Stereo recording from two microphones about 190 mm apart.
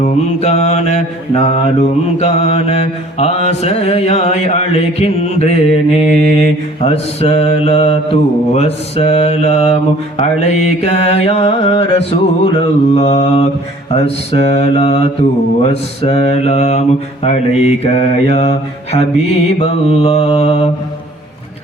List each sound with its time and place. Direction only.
0.0 s mantra: 35° left (ahead or behind)